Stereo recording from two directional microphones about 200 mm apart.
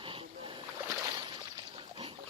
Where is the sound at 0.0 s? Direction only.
25° right (ahead or behind).